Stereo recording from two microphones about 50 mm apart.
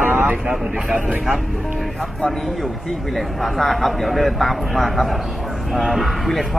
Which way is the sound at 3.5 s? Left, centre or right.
Centre.